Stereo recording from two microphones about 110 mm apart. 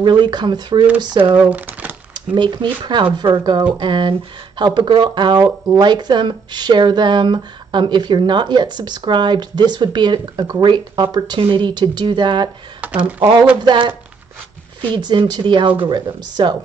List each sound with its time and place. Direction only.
0.0 s speech: 45° right (ahead or behind)
1.4 s speech: 15° right (ahead or behind)
2.1 s speech: 45° right (ahead or behind)
12.8 s a sound: 15° right (ahead or behind)
13.7 s speech: 45° right (ahead or behind)
15.0 s speech: 40° right (ahead or behind)